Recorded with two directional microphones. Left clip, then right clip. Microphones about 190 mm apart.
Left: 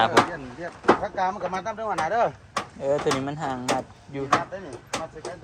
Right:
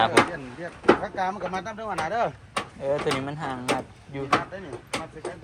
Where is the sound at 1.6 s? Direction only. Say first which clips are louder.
Left 3 dB; 35° left (ahead or behind).